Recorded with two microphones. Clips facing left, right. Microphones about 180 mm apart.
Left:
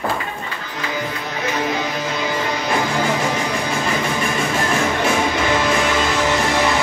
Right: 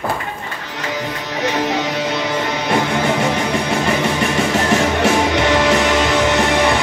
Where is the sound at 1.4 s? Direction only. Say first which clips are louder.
Right 3 dB; 75° right (ahead or behind).